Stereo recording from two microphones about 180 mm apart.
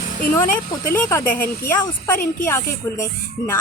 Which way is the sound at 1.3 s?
50° left (ahead or behind).